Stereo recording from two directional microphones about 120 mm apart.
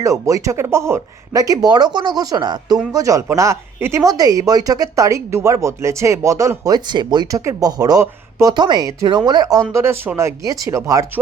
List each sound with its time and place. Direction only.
0.0 s speech: 25° right (ahead or behind)
9.7 s speech: 20° right (ahead or behind)